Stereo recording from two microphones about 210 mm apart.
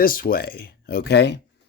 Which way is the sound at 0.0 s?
45° left (ahead or behind).